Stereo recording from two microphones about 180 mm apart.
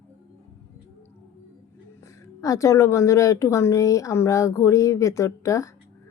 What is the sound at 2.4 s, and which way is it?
Speech, 15° left (ahead or behind).